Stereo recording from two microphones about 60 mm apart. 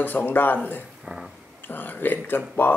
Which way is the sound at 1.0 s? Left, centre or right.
Centre.